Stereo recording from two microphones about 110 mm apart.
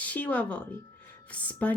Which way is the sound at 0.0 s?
15° left (ahead or behind).